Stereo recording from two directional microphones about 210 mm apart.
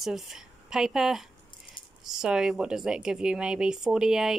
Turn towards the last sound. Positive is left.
turn(degrees=0)  # may be behind; listen again after turning